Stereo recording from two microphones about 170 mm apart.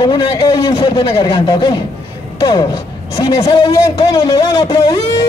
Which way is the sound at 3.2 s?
25° left (ahead or behind).